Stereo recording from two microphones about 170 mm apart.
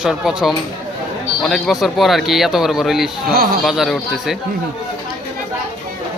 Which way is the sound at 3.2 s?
60° right (ahead or behind).